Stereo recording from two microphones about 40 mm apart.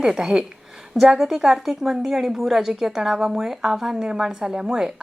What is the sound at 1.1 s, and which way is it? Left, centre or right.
A woman's voice, centre.